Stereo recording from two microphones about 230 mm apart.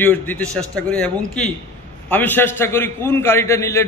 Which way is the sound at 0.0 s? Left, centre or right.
Centre.